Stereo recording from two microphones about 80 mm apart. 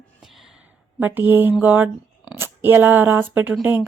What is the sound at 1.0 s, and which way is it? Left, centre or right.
Speech, right.